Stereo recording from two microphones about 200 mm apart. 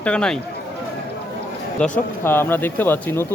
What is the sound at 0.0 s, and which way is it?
Speech, 5° left (ahead or behind).